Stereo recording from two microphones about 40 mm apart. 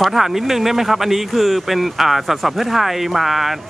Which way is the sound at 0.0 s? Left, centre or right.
Centre.